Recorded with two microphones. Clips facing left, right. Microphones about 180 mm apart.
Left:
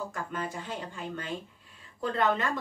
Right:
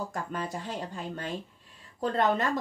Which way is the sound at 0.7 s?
40° right (ahead or behind).